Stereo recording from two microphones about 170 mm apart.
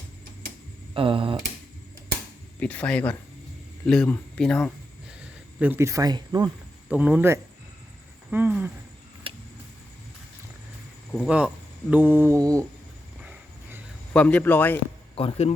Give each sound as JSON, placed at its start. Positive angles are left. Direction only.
{"t": 0.9, "sound": "speech", "side_deg": -30}
{"t": 2.6, "sound": "a man's voice", "side_deg": 10}
{"t": 5.2, "sound": "speech", "side_deg": -10}
{"t": 6.9, "sound": "speech", "side_deg": -5}
{"t": 9.2, "sound": "vehicle", "side_deg": -30}
{"t": 11.1, "sound": "speech", "side_deg": -5}
{"t": 13.2, "sound": "a sound", "side_deg": -10}
{"t": 14.1, "sound": "a man's voice", "side_deg": 10}
{"t": 15.1, "sound": "speech", "side_deg": 35}